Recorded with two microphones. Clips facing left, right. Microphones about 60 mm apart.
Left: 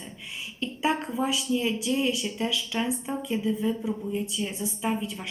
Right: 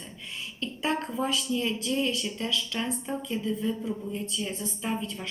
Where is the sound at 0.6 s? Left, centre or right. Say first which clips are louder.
Left 3 dB; centre.